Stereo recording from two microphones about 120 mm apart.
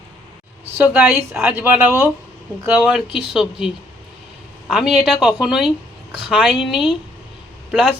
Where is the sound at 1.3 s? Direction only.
20° right (ahead or behind).